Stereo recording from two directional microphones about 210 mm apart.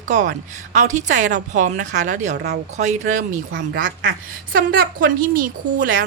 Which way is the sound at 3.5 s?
55° right (ahead or behind).